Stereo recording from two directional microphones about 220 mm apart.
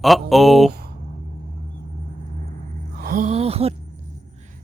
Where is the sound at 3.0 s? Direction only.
40° right (ahead or behind).